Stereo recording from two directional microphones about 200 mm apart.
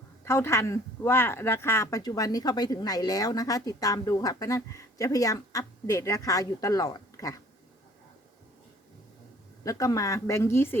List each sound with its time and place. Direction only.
0.3 s speech: 15° left (ahead or behind)
9.6 s speech: 15° left (ahead or behind)